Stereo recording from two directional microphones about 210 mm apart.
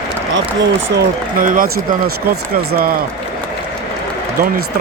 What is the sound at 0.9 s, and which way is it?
Speech, 45° right (ahead or behind).